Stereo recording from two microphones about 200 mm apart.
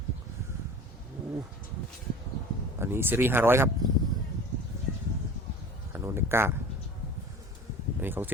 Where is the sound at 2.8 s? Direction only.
10° right (ahead or behind).